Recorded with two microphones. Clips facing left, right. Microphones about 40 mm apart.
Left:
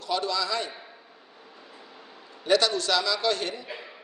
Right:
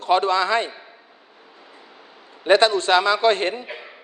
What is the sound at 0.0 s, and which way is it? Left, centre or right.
Speech, right.